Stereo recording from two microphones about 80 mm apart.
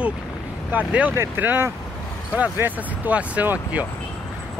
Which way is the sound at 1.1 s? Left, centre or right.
Right.